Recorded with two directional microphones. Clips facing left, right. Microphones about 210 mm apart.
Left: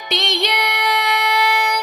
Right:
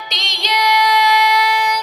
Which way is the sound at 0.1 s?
55° left (ahead or behind).